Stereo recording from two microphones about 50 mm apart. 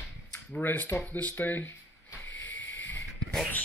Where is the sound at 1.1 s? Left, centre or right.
Left.